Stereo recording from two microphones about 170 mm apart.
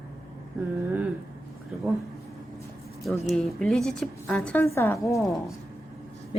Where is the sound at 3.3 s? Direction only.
Centre (ahead or behind); by 5.2 s 20° left (ahead or behind).